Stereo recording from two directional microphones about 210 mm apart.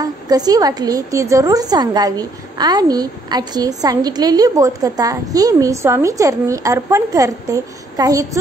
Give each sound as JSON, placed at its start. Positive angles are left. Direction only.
{"t": 0.0, "sound": "a woman's voice", "side_deg": -20}